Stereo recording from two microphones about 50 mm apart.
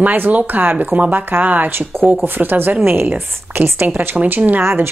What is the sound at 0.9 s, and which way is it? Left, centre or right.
A woman's voice, right.